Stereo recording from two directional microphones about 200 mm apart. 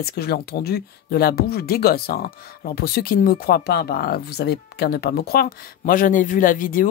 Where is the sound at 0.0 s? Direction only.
50° left (ahead or behind).